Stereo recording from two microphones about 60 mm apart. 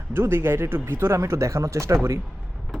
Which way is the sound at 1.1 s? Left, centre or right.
Right.